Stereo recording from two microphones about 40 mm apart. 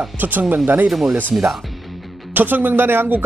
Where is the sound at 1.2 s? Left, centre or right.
Right.